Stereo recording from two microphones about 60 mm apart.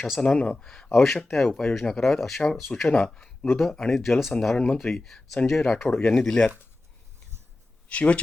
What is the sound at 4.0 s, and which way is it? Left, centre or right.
Speech, centre.